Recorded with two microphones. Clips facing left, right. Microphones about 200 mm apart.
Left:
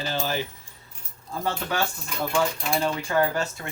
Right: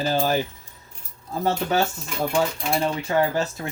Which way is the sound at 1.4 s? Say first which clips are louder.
Right 6 dB; 25° right (ahead or behind).